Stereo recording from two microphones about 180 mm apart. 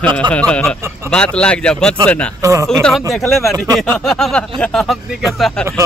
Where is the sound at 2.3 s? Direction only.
15° right (ahead or behind).